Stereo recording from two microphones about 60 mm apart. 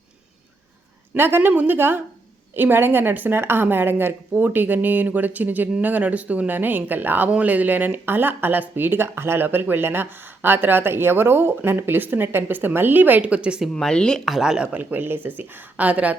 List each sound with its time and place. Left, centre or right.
1.1 s a woman's voice: right; by 13.6 s centre
13.7 s speech: centre
14.3 s speech: centre
14.7 s a woman's voice: right